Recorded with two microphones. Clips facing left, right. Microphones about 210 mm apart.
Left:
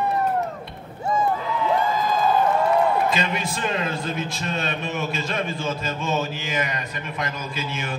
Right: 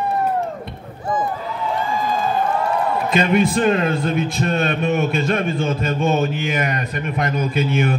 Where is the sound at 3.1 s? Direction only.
55° right (ahead or behind).